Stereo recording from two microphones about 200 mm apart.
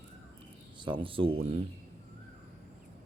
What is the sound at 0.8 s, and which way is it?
Speech, 25° right (ahead or behind).